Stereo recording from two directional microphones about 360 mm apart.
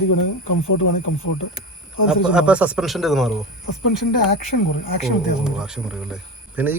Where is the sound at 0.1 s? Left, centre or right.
Left.